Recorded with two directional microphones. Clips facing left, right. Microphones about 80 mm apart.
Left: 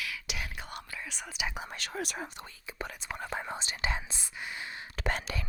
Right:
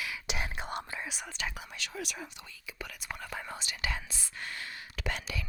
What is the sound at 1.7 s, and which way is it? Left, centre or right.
Whispering, left.